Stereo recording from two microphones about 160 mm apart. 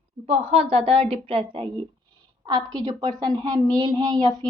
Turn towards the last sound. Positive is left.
turn(degrees=-25)  # may be behind; listen again after turning